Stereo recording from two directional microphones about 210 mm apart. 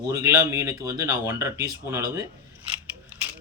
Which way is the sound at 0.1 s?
15° right (ahead or behind).